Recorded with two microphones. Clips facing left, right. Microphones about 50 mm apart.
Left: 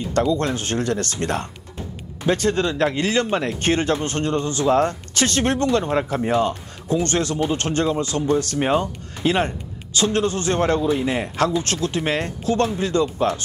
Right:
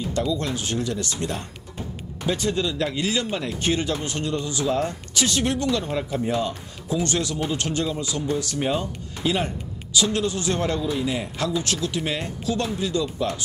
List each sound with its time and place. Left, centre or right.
0.1 s a man's voice: left
8.5 s a man's voice: left